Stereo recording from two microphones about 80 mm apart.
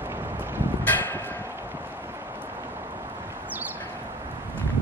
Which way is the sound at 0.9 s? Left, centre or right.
Left.